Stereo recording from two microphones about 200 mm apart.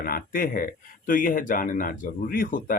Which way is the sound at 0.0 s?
45° left (ahead or behind).